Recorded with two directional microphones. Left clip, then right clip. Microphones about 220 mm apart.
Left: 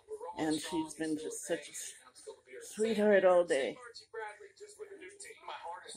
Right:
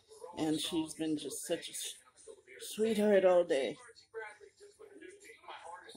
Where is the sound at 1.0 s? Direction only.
10° right (ahead or behind).